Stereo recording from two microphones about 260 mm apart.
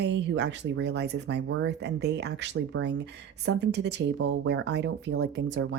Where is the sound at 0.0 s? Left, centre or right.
Right.